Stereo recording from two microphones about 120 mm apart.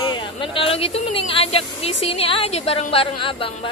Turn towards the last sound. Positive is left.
turn(degrees=45)  # may be behind; listen again after turning